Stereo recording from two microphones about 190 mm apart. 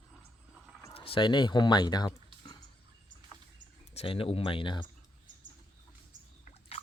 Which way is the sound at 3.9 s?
30° left (ahead or behind).